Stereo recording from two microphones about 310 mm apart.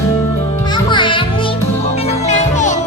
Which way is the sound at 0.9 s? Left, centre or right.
Centre.